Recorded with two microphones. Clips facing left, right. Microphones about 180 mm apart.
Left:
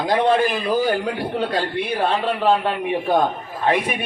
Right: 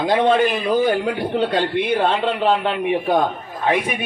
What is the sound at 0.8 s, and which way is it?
A man's voice, 20° right (ahead or behind).